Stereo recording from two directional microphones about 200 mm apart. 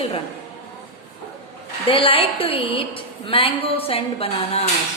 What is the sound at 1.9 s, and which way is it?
A woman's voice, 25° left (ahead or behind).